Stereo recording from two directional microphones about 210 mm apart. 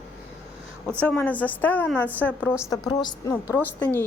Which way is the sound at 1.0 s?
5° left (ahead or behind).